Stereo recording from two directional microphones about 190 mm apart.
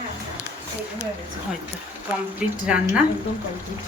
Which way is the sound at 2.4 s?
5° right (ahead or behind).